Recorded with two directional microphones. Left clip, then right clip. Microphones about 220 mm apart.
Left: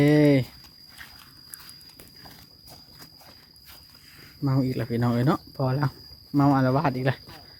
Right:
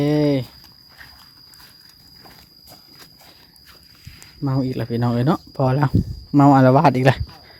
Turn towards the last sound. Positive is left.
turn(degrees=-35)  # may be behind; listen again after turning